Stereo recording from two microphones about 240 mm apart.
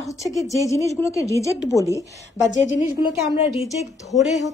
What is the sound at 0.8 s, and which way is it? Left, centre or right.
Speech, centre.